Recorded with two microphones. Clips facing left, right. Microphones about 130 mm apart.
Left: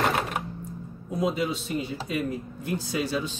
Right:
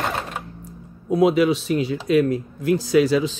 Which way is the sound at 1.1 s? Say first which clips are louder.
Right 10 dB; 80° right.